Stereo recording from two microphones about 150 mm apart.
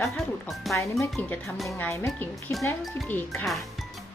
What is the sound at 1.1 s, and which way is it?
Speech, centre (ahead or behind).